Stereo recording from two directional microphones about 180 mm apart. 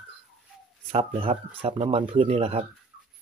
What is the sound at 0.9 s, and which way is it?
Speech, 35° right (ahead or behind).